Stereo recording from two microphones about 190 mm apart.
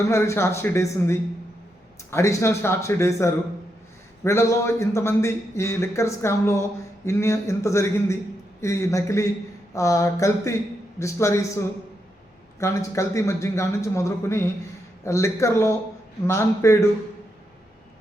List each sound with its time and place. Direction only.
0.1 s speech: 15° left (ahead or behind)
12.5 s speech: 15° left (ahead or behind)